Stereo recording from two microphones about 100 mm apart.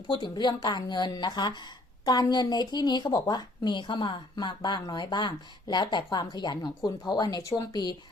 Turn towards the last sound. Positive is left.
turn(degrees=45)  # may be behind; listen again after turning